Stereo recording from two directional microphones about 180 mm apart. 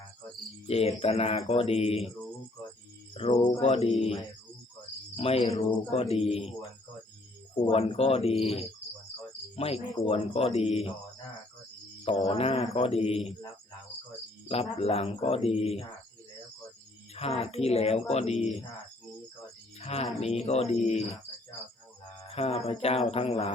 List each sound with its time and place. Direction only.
0.7 s speech: 35° left (ahead or behind)
3.2 s speech: 35° left (ahead or behind)
5.1 s speech: 35° left (ahead or behind)
12.3 s speech: 35° left (ahead or behind)
14.4 s speech: 35° left (ahead or behind)
17.2 s speech: 35° left (ahead or behind)
19.8 s speech: 35° left (ahead or behind)
22.4 s speech: 35° left (ahead or behind)